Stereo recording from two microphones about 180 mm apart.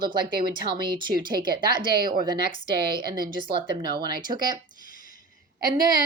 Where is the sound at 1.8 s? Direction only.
55° right (ahead or behind).